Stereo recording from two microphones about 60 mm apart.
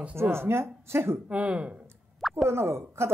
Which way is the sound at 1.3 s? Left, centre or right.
Centre.